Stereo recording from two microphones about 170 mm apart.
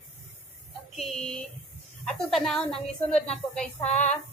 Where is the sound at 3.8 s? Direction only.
40° left (ahead or behind).